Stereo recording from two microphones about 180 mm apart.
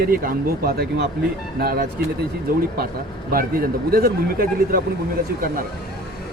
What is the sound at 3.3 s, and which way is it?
Speech, 55° right (ahead or behind).